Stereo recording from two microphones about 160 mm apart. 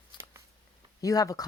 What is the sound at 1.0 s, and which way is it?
Speech, 20° left (ahead or behind).